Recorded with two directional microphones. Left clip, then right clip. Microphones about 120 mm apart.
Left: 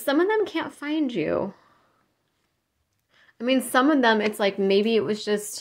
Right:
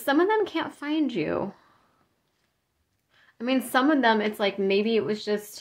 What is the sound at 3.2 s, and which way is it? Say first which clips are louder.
A woman's voice: left 3 dB; 20° left (ahead or behind).